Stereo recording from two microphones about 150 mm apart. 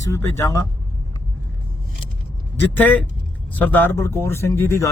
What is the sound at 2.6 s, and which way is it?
Speech, 10° left (ahead or behind).